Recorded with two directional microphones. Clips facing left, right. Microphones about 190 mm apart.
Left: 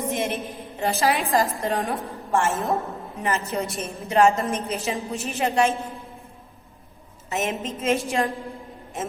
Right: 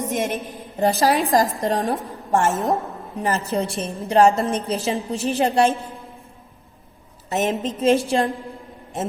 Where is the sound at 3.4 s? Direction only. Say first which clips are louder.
Right 4 dB; 30° right (ahead or behind).